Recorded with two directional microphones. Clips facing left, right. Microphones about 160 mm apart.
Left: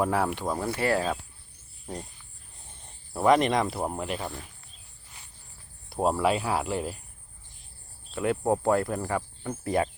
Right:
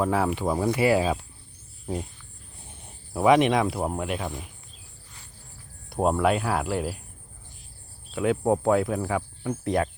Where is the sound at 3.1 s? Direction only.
5° right (ahead or behind).